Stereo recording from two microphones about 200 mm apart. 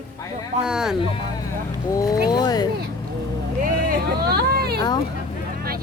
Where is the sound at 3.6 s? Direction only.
50° right (ahead or behind).